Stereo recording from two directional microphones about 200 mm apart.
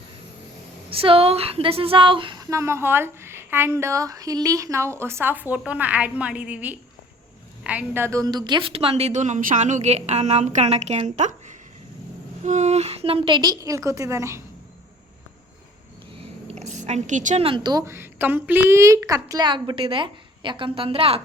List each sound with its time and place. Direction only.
0.9 s a woman's voice: 25° right (ahead or behind)
16.5 s a woman's voice: 35° right (ahead or behind)